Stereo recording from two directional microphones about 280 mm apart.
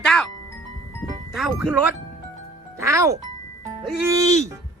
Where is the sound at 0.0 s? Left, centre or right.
Centre.